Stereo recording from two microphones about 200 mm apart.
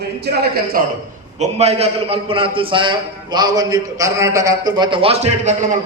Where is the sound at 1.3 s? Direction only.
30° right (ahead or behind).